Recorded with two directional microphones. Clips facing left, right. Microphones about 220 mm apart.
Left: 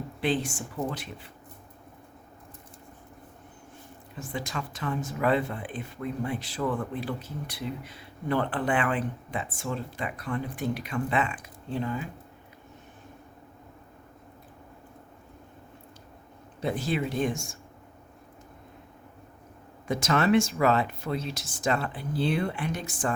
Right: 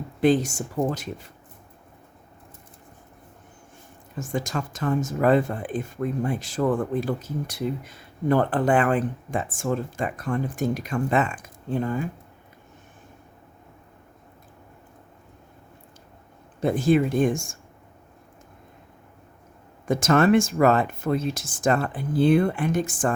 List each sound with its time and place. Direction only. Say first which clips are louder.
0.2 s speech: right 8 dB; 45° right (ahead or behind)
4.2 s speech: right 6 dB; 45° right (ahead or behind)
16.6 s speech: right 9 dB; 50° right (ahead or behind)
19.9 s speech: right 5 dB; 50° right (ahead or behind)